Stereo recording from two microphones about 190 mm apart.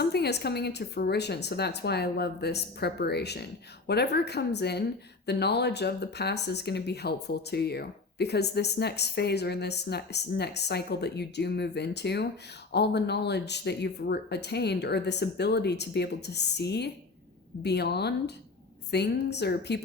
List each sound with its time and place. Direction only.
0.0 s speech: 60° left (ahead or behind)